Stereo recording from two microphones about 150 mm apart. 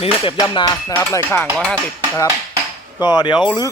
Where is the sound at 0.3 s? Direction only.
25° left (ahead or behind).